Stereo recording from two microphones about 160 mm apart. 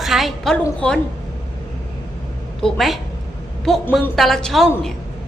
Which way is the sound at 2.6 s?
Centre (ahead or behind).